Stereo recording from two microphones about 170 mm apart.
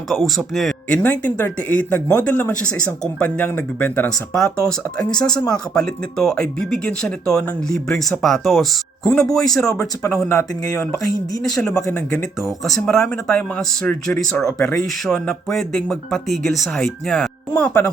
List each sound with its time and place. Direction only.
0.1 s speech: centre (ahead or behind)
5.7 s speech: 5° left (ahead or behind)
10.0 s speech: 15° left (ahead or behind)
12.1 s speech: centre (ahead or behind)